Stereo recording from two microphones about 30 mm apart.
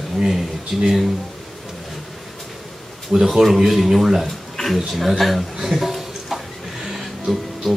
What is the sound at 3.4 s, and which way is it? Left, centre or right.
Speech, centre.